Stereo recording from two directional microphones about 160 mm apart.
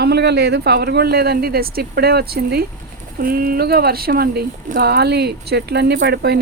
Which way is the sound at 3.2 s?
65° right (ahead or behind).